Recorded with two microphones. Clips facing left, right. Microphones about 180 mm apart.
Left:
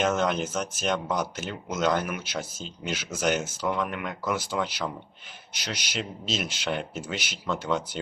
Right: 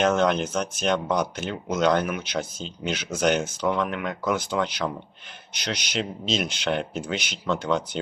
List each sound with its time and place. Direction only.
0.0 s speech: 5° left (ahead or behind)